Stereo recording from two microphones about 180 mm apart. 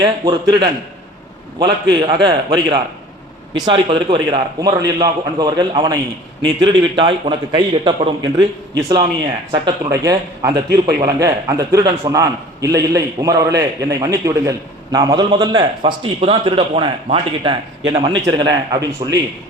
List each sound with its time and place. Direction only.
0.0 s a man's voice: 25° right (ahead or behind)
9.5 s a man's voice: 20° right (ahead or behind)